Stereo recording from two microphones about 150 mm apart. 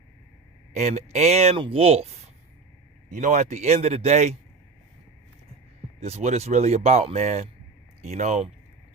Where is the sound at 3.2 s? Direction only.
50° right (ahead or behind).